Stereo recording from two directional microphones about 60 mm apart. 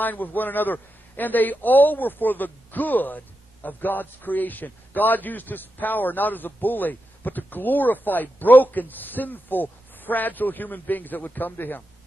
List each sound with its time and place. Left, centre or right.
0.0 s a man's voice: left